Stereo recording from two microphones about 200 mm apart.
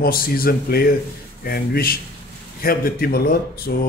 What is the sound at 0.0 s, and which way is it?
Speech, 45° left (ahead or behind).